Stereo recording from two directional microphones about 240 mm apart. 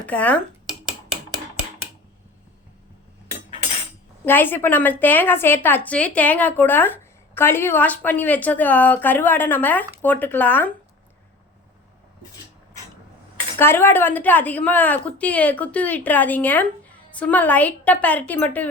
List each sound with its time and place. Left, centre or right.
0.0 s speech: centre
4.3 s a woman's voice: centre
13.6 s a woman's voice: centre